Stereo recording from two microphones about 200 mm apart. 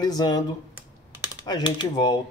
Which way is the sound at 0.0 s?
20° left (ahead or behind).